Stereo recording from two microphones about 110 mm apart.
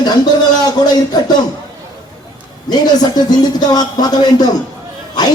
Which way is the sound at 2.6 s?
40° left (ahead or behind).